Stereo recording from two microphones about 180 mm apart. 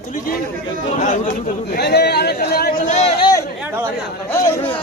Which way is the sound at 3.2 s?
20° left (ahead or behind).